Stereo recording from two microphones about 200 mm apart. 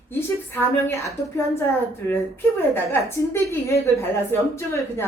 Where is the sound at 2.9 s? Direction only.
15° left (ahead or behind).